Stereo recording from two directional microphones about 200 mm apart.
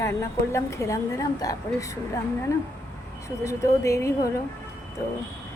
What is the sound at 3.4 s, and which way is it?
Speech, 15° left (ahead or behind).